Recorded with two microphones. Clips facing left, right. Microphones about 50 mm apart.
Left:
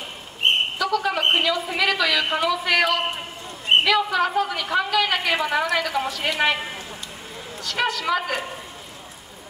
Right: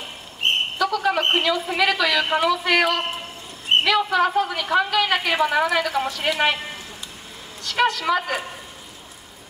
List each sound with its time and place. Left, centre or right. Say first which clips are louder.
0.7 s a sound: right 2 dB; centre
1.3 s a woman's voice: right 1 dB; centre
7.6 s a woman's voice: right 3 dB; centre